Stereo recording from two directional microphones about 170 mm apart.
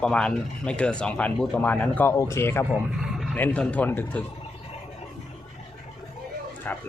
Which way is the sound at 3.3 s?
10° left (ahead or behind).